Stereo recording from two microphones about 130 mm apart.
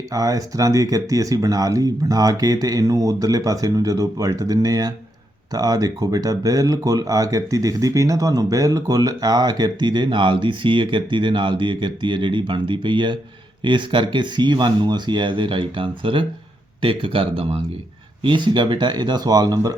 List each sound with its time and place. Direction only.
0.1 s speech: 25° right (ahead or behind)